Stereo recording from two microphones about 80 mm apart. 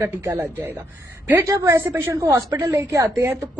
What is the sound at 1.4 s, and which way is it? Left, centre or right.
A woman's voice, right.